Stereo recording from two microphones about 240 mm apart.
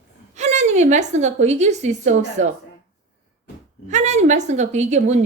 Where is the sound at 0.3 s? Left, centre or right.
Right.